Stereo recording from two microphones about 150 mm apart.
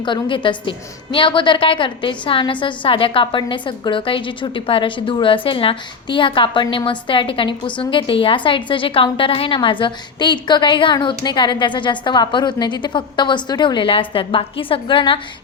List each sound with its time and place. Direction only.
0.0 s a woman's voice: 35° left (ahead or behind)